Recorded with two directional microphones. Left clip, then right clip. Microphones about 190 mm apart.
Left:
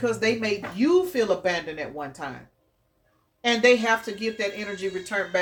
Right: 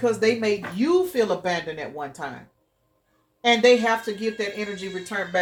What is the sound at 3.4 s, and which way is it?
Speech, 30° right (ahead or behind).